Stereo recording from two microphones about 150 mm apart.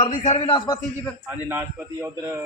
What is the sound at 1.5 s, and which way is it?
Speech, 15° right (ahead or behind).